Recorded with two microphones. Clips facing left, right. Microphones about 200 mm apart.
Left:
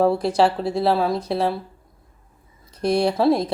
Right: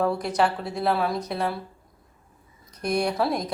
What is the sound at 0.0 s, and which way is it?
Speech, 30° left (ahead or behind).